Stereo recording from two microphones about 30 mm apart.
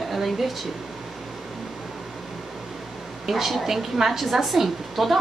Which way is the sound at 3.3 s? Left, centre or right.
Centre.